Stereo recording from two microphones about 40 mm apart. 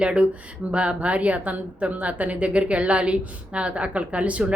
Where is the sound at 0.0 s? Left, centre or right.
Right.